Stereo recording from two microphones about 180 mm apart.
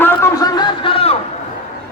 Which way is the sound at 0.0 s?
20° left (ahead or behind).